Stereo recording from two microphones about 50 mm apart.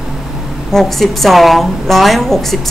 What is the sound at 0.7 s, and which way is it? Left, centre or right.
A woman's voice, centre.